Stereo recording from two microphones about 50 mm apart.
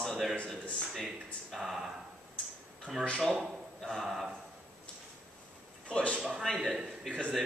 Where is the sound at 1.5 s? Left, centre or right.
Centre.